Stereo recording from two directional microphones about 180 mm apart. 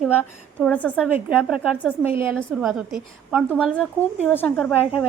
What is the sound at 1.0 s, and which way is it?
A woman's voice, 5° right (ahead or behind).